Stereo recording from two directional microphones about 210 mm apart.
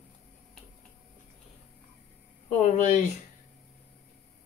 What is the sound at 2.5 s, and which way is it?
Speech, 35° left (ahead or behind).